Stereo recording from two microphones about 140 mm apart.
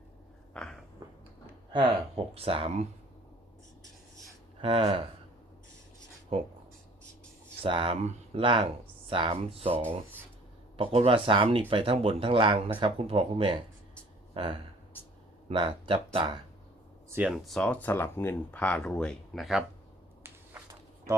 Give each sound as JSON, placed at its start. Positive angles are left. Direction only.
{"t": 0.5, "sound": "a sound", "side_deg": 5}
{"t": 1.7, "sound": "speech", "side_deg": -40}
{"t": 4.6, "sound": "speech", "side_deg": -40}
{"t": 6.3, "sound": "speech", "side_deg": -45}
{"t": 7.6, "sound": "speech", "side_deg": -40}
{"t": 17.1, "sound": "speech", "side_deg": -10}